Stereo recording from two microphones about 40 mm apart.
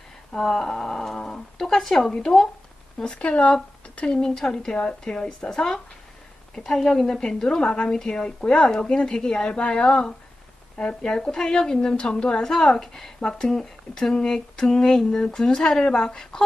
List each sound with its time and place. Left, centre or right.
0.4 s a woman's voice: centre
3.0 s speech: left
4.1 s a woman's voice: centre